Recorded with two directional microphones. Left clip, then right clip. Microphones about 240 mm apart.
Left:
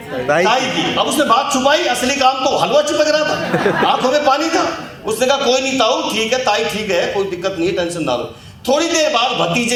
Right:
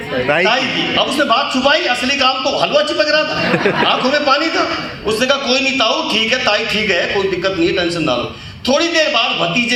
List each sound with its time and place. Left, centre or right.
0.4 s a man's voice: left
8.7 s speech: left